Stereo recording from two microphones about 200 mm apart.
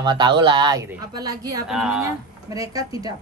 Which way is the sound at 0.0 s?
25° right (ahead or behind).